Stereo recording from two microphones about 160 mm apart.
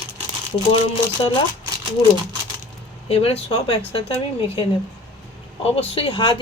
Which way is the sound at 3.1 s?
40° left (ahead or behind).